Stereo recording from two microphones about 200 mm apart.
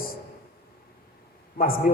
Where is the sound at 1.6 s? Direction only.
45° left (ahead or behind).